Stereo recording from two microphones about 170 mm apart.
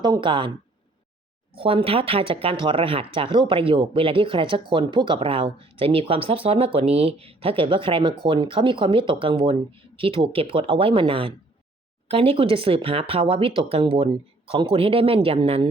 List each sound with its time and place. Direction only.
0.0 s speech: 30° right (ahead or behind)
1.5 s speech: 30° right (ahead or behind)